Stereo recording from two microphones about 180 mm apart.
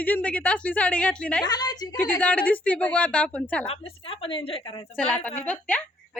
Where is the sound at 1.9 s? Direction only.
5° left (ahead or behind).